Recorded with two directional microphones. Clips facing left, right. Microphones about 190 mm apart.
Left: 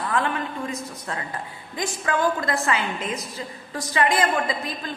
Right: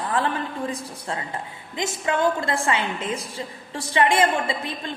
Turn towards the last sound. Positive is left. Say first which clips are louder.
# left 1 dB
turn(degrees=-25)  # may be behind; listen again after turning